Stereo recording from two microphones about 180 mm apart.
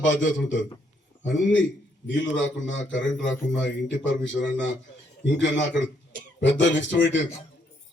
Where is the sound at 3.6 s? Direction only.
85° left.